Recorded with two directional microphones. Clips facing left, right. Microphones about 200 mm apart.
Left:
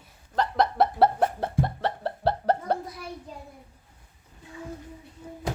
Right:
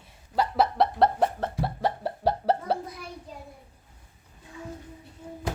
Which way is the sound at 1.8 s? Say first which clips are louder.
Right 4 dB; 10° right (ahead or behind).